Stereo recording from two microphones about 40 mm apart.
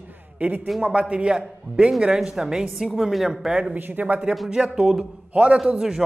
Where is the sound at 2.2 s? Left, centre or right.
Centre.